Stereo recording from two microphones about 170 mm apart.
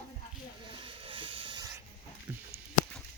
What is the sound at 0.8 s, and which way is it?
Hiss, 30° right (ahead or behind).